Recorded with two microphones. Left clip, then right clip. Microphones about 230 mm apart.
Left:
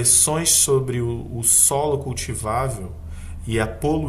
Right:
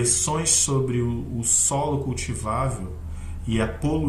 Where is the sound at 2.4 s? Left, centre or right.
Left.